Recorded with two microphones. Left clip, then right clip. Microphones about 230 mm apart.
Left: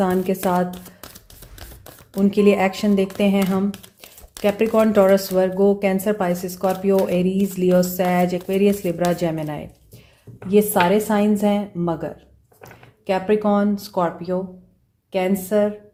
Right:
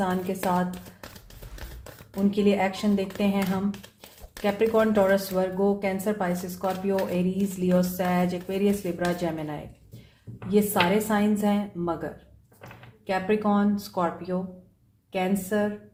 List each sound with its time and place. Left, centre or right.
0.0 s speech: left
2.1 s speech: left
15.4 s speech: left